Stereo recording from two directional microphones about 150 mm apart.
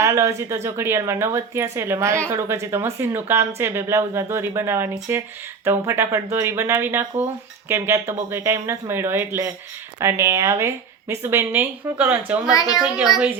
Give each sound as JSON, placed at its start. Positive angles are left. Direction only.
{"t": 0.0, "sound": "a woman's voice", "side_deg": -20}
{"t": 12.5, "sound": "a woman's voice", "side_deg": 25}